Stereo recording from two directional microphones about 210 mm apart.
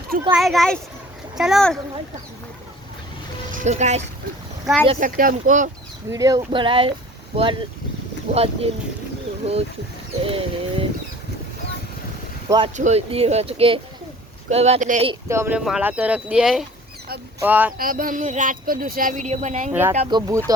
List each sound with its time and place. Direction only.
0.3 s speech: centre (ahead or behind)
3.5 s speech: 35° right (ahead or behind)
4.6 s speech: centre (ahead or behind)
4.9 s speech: 40° right (ahead or behind)
6.1 s speech: 15° right (ahead or behind)
8.3 s speech: 30° right (ahead or behind)
12.5 s speech: 25° right (ahead or behind)
15.3 s speech: 10° right (ahead or behind)
17.7 s speech: 40° right (ahead or behind)
20.1 s speech: 20° right (ahead or behind)